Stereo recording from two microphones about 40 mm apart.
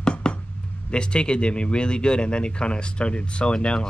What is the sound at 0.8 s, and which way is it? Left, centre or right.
Speech, left.